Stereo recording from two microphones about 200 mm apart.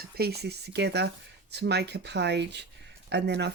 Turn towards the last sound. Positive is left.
turn(degrees=-55)  # may be behind; listen again after turning